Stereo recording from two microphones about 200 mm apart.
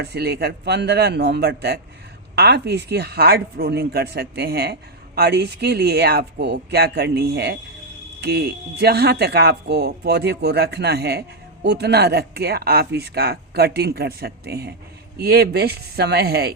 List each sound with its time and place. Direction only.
0.0 s speech: 50° right (ahead or behind)